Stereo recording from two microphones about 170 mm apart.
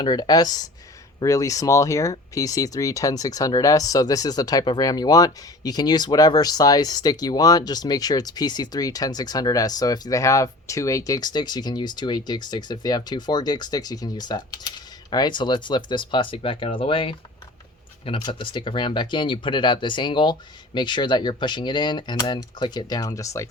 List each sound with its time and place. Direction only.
0.0 s speech: 25° left (ahead or behind)
18.2 s speech: 25° left (ahead or behind)